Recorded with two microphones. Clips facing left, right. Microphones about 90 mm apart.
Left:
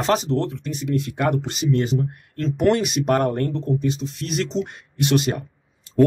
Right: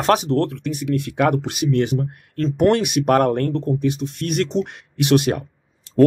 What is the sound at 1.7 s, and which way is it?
Speech, 65° right (ahead or behind).